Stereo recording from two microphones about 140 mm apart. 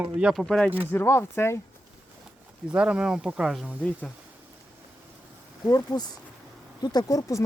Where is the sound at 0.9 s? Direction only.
15° left (ahead or behind).